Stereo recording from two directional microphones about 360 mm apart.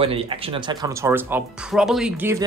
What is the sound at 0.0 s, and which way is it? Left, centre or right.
Speech, centre.